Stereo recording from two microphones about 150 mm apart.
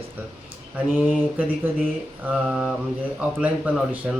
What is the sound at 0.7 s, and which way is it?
Speech, 10° right (ahead or behind).